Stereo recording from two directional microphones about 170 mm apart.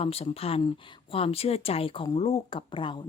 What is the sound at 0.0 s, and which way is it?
Speech, 35° left (ahead or behind).